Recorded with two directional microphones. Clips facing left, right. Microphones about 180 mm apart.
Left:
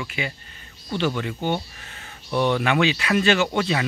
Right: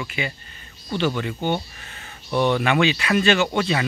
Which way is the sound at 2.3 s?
25° right (ahead or behind).